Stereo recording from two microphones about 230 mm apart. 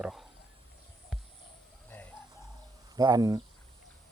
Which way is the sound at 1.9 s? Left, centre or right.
Centre.